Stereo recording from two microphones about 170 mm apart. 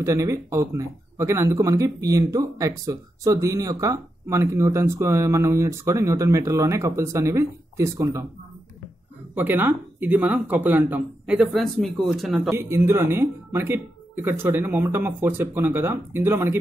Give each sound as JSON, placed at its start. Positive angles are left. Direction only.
{"t": 0.0, "sound": "speech", "side_deg": -15}
{"t": 9.3, "sound": "speech", "side_deg": -10}
{"t": 12.4, "sound": "speech", "side_deg": -15}